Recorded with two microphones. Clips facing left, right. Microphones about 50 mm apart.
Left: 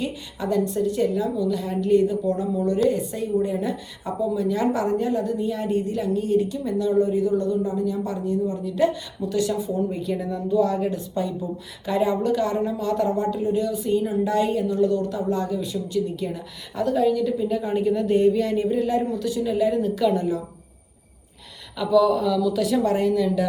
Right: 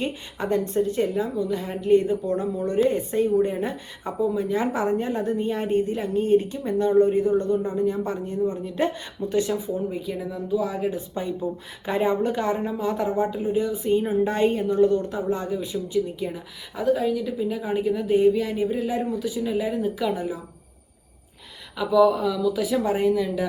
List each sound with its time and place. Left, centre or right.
0.0 s a woman's voice: right
9.7 s a woman's voice: centre
21.8 s a woman's voice: centre